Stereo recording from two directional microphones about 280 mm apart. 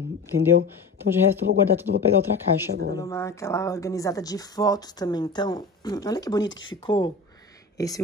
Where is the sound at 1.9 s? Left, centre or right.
Right.